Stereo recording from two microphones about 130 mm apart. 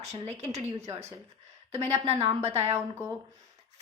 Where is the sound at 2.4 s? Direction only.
55° right (ahead or behind).